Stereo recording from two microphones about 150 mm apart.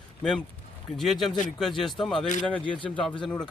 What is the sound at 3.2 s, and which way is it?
Speech, 5° left (ahead or behind).